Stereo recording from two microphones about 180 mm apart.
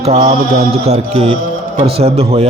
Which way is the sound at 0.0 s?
40° right (ahead or behind).